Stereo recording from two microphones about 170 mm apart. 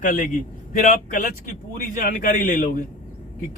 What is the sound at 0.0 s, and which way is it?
A man's voice, 50° left (ahead or behind).